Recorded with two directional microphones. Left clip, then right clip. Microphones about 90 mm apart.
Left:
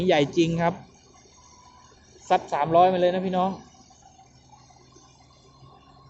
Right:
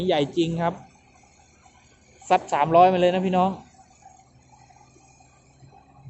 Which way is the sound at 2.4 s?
30° right (ahead or behind).